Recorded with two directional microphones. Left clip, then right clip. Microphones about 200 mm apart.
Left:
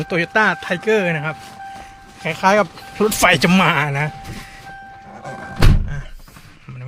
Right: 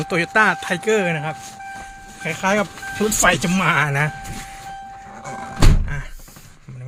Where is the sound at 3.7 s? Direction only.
Centre (ahead or behind).